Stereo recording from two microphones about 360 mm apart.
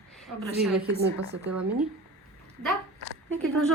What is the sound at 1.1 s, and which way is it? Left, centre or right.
Speech, right.